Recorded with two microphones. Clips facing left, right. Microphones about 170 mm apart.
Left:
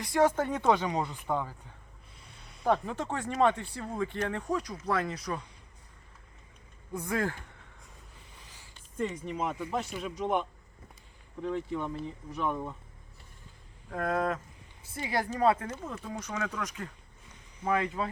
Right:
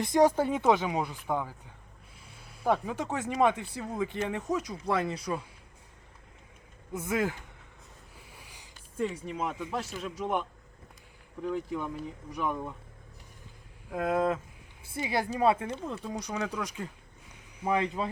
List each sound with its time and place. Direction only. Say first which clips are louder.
0.0 s speech: right 3 dB; 15° right (ahead or behind)
8.3 s a sound: right 2 dB; 10° right (ahead or behind)
9.0 s speech: right 1 dB; 5° right (ahead or behind)
11.4 s speech: even; 5° right (ahead or behind)
13.9 s speech: right 2 dB; 10° right (ahead or behind)